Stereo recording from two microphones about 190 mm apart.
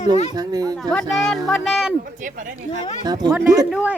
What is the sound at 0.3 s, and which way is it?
Speech, 20° right (ahead or behind).